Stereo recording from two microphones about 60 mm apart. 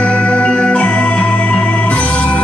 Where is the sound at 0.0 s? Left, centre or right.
Left.